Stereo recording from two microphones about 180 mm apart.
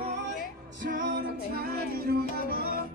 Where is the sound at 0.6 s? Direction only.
50° right (ahead or behind).